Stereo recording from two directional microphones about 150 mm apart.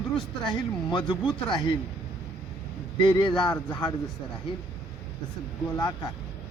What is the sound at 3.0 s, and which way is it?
Speech, 30° left (ahead or behind).